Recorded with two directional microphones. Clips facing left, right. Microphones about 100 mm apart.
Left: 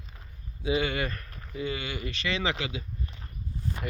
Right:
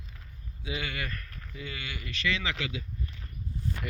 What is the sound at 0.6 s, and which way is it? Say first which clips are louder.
Speech: left 8 dB; 25° left (ahead or behind).